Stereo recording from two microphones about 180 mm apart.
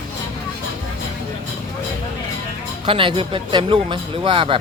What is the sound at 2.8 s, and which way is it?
Speech, 30° right (ahead or behind).